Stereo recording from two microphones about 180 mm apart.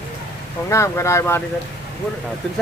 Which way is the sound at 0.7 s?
15° left (ahead or behind).